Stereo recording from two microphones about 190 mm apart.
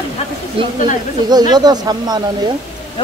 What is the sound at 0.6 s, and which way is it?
Speech, 25° right (ahead or behind).